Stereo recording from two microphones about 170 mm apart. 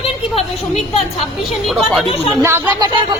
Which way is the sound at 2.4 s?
20° right (ahead or behind).